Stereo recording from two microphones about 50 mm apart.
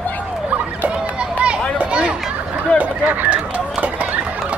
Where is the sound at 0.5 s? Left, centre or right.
Right.